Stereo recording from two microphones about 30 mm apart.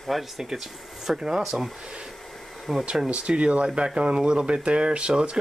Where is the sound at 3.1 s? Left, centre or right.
Right.